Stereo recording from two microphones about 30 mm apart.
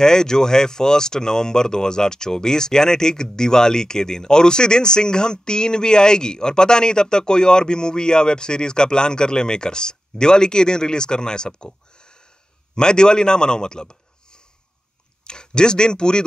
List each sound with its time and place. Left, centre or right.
0.0 s a man's voice: left